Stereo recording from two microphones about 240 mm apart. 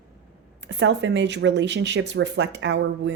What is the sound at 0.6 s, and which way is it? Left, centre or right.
A woman's voice, right.